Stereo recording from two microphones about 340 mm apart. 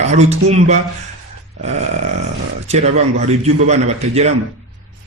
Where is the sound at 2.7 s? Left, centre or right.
Centre.